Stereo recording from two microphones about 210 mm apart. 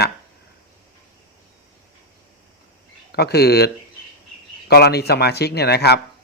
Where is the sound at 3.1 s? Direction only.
50° left (ahead or behind).